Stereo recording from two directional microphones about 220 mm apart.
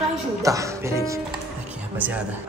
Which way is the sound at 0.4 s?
15° right (ahead or behind).